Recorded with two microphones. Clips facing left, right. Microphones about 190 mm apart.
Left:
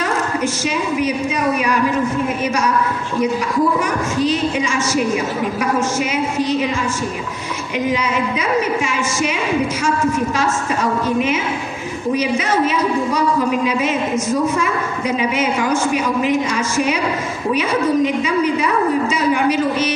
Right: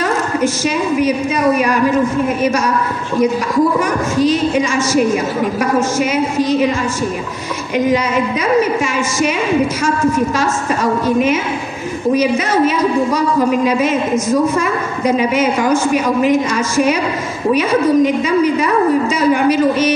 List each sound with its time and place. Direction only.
1.0 s a woman's voice: 45° right (ahead or behind)
7.9 s a woman's voice: 45° right (ahead or behind)
13.7 s a woman's voice: 45° right (ahead or behind)
17.5 s a woman's voice: 45° right (ahead or behind)